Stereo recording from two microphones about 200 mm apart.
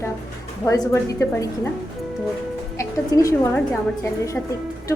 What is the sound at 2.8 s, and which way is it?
Music, 15° left (ahead or behind).